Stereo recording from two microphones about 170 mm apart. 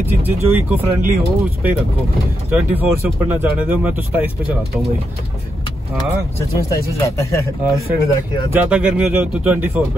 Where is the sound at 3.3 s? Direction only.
10° right (ahead or behind).